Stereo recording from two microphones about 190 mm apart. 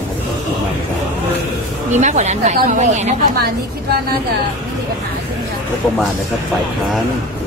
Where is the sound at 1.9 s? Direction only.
35° right (ahead or behind).